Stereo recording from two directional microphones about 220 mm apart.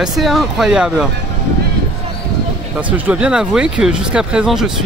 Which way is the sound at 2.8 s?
5° right (ahead or behind).